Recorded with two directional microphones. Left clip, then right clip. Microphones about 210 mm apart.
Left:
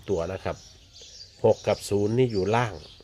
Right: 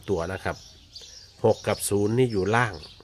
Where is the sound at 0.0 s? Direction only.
15° right (ahead or behind).